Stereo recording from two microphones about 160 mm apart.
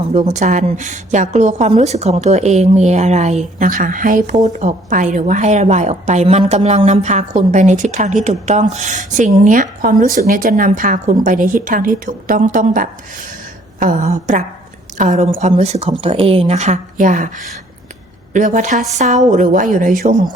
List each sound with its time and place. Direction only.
0.1 s a woman's voice: 45° right (ahead or behind)